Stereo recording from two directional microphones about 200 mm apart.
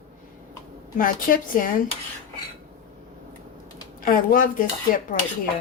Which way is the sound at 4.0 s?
45° left (ahead or behind).